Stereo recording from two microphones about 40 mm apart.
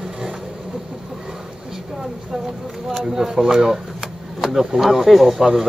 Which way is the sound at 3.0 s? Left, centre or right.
Centre.